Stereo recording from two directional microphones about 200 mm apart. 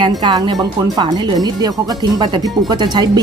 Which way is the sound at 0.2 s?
20° right (ahead or behind).